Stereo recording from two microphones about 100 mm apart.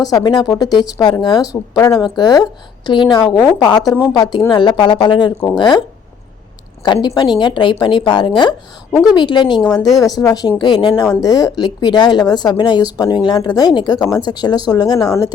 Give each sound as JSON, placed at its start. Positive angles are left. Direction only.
{"t": 0.1, "sound": "speech", "side_deg": 45}
{"t": 6.8, "sound": "speech", "side_deg": 45}
{"t": 9.8, "sound": "speech", "side_deg": 0}
{"t": 10.2, "sound": "speech", "side_deg": 40}
{"t": 11.2, "sound": "speech", "side_deg": 40}